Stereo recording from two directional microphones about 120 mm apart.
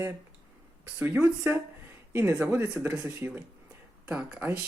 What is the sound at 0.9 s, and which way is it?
Speech, 15° right (ahead or behind).